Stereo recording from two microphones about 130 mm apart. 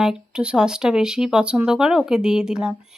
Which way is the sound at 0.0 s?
5° right (ahead or behind).